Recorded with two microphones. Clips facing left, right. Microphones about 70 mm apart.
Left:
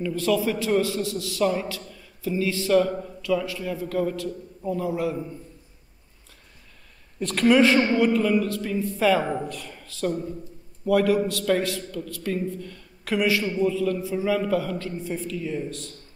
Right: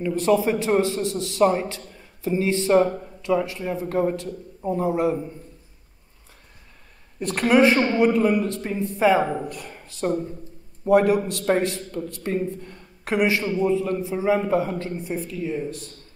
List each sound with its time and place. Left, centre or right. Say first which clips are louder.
0.0 s a man's voice: right 3 dB; right
7.4 s speech: right 1 dB; right
8.1 s a man's voice: right 2 dB; right